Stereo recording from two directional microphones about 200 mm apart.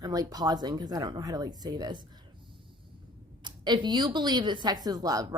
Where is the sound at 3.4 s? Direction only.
20° right (ahead or behind).